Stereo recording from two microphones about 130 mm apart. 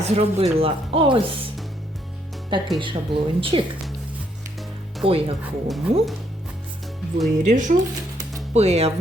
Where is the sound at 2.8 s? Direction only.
40° right (ahead or behind).